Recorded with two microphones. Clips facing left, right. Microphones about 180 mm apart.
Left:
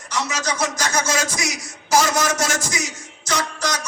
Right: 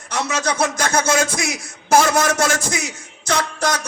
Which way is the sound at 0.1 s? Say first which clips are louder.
Right 3 dB; 55° right (ahead or behind).